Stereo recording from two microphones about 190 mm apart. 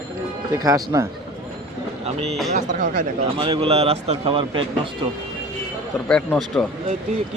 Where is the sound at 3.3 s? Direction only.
25° right (ahead or behind).